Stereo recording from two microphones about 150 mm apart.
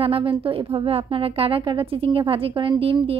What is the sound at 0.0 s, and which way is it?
A woman's voice, 40° right (ahead or behind).